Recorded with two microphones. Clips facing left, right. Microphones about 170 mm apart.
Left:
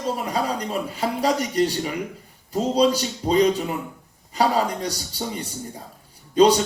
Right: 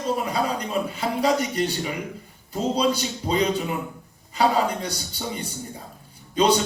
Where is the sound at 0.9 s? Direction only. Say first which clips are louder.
Even; 35° left (ahead or behind).